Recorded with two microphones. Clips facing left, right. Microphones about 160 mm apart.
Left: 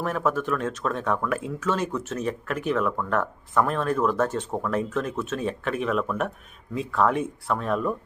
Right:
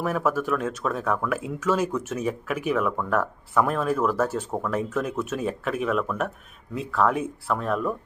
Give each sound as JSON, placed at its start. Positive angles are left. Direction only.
{"t": 0.0, "sound": "speech", "side_deg": -5}